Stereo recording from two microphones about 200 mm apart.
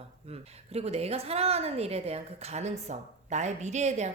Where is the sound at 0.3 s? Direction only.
30° right (ahead or behind).